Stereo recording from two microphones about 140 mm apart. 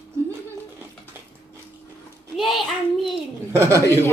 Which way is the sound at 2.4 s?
Centre (ahead or behind).